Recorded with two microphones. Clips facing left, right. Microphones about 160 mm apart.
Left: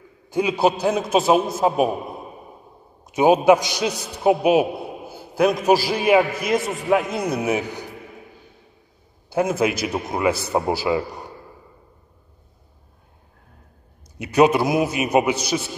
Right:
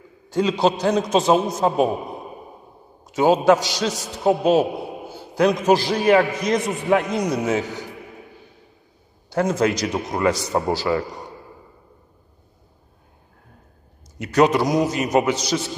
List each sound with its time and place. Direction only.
0.3 s a man's voice: 10° left (ahead or behind)
3.0 s a man's voice: 15° left (ahead or behind)
9.3 s a man's voice: 10° left (ahead or behind)
14.1 s a man's voice: 10° left (ahead or behind)